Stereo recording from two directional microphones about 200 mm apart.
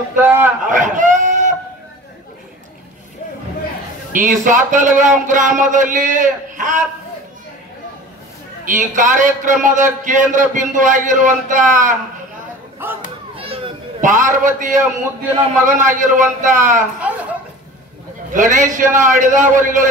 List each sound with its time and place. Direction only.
0.2 s a man's voice: 10° right (ahead or behind)
0.7 s a sound: 40° right (ahead or behind)
4.1 s a man's voice: 40° right (ahead or behind)
8.6 s a man's voice: 40° right (ahead or behind)
12.8 s a sound: 10° right (ahead or behind)
14.0 s a man's voice: 40° right (ahead or behind)
18.3 s a man's voice: 40° right (ahead or behind)